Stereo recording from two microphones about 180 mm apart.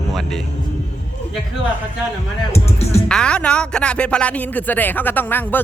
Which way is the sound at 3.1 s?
5° left (ahead or behind).